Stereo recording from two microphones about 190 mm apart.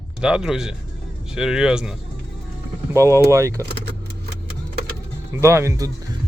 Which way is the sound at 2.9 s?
15° right (ahead or behind).